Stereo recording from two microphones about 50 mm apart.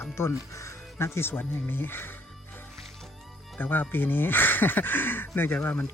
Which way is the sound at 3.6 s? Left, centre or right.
Left.